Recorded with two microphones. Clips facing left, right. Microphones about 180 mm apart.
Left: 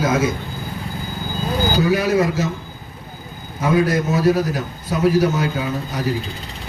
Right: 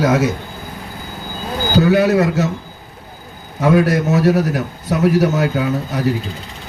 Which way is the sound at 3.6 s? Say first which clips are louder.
Right 3 dB; 70° right (ahead or behind).